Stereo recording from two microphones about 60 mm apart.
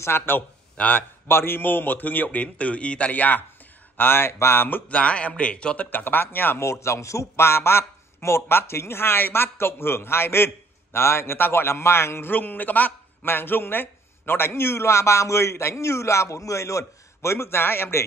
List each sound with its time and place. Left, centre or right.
0.0 s speech: left
0.7 s a man's voice: left
1.2 s a man's voice: left
4.8 s a man's voice: left
5.9 s speech: left
6.6 s a man's voice: left